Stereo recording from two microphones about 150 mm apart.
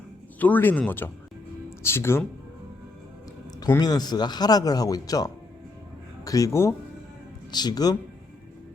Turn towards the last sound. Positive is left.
turn(degrees=25)  # may be behind; listen again after turning